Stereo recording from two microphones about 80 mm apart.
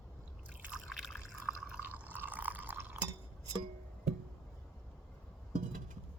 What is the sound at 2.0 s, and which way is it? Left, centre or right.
Drip, right.